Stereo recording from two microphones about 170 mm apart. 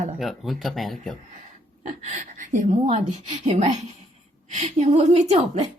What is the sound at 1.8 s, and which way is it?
A woman's voice, 45° right (ahead or behind).